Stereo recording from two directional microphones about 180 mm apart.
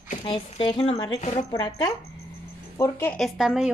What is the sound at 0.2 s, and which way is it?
Speech, 25° left (ahead or behind).